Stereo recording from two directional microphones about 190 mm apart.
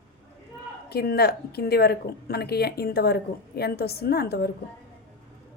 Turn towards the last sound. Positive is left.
turn(degrees=55)  # may be behind; listen again after turning